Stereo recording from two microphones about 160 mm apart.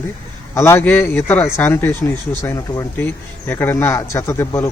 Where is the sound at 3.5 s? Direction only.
15° left (ahead or behind).